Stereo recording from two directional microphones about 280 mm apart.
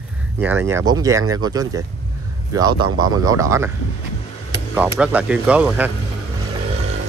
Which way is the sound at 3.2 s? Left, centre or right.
Centre.